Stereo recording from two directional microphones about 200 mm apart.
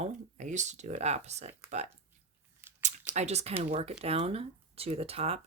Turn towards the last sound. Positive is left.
turn(degrees=-30)  # may be behind; listen again after turning